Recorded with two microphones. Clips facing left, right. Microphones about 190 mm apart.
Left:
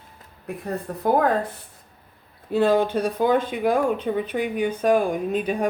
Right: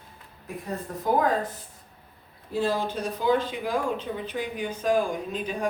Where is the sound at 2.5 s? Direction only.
60° left (ahead or behind).